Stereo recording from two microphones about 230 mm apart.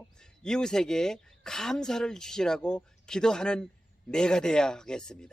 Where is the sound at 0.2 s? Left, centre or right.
Centre.